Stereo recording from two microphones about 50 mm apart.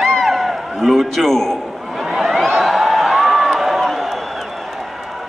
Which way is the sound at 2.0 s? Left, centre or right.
Centre.